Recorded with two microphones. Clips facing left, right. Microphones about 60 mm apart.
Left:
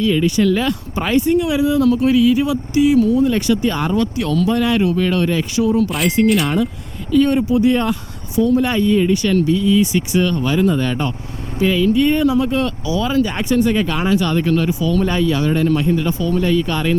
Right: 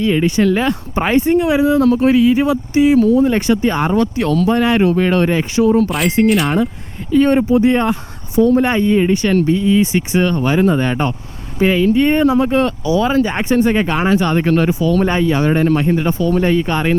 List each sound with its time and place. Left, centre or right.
0.0 s speech: right
6.2 s speech: centre
7.1 s speech: right